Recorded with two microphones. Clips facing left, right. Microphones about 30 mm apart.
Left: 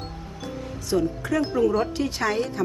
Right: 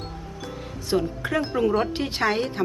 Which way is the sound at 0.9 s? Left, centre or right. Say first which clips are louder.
Left 1 dB; right.